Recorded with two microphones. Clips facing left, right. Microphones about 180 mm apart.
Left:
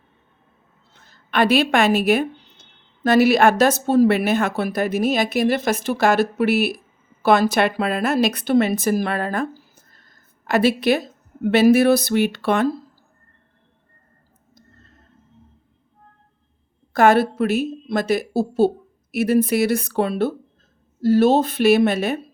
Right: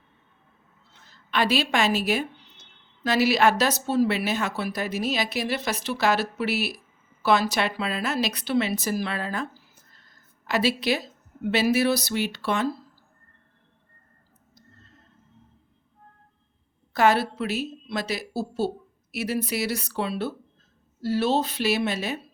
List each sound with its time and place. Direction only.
1.0 s speech: 55° left (ahead or behind)
16.9 s a woman's voice: 50° left (ahead or behind)